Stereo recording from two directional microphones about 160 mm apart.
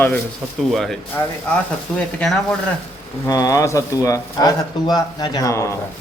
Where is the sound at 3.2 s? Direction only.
20° left (ahead or behind).